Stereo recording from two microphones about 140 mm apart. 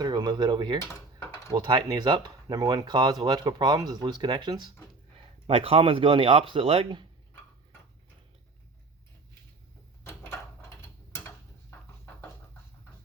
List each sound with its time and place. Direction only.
0.0 s speech: 30° right (ahead or behind)
5.5 s speech: 45° right (ahead or behind)
10.0 s a sound: 20° left (ahead or behind)